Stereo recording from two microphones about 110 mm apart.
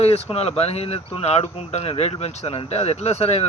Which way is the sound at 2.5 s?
70° left (ahead or behind).